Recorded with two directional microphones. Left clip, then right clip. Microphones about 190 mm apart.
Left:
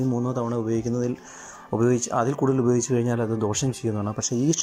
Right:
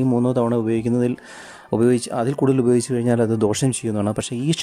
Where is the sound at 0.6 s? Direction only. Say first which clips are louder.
Right 5 dB; 50° right (ahead or behind).